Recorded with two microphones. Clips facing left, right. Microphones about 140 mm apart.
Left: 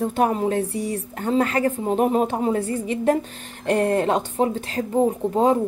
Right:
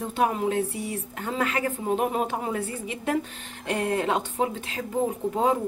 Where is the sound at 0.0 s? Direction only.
45° left (ahead or behind).